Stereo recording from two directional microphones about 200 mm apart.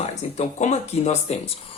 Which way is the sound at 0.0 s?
35° left (ahead or behind).